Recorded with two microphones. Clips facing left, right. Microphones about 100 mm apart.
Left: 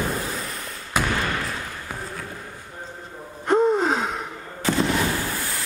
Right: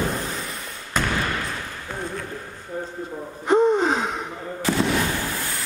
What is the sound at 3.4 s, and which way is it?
Gasp, centre (ahead or behind).